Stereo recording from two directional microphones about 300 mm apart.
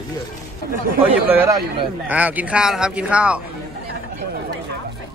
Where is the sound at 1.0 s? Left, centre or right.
Centre.